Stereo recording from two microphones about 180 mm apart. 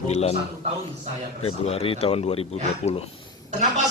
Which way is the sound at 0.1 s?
35° left (ahead or behind).